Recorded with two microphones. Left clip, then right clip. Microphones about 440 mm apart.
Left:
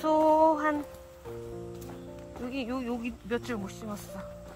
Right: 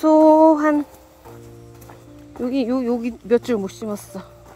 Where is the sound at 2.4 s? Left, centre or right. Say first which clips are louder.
Right 13 dB; centre.